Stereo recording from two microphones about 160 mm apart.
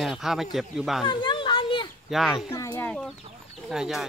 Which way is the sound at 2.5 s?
15° left (ahead or behind).